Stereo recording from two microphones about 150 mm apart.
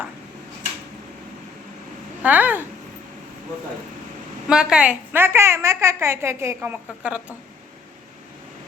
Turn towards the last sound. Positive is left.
turn(degrees=-10)  # may be behind; listen again after turning